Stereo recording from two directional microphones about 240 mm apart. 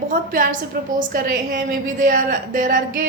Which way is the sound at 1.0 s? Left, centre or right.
Right.